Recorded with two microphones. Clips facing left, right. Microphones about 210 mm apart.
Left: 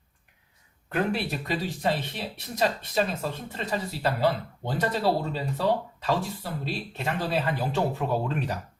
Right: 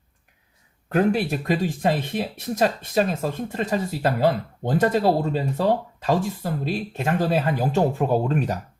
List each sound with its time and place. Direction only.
0.9 s speech: 45° right (ahead or behind)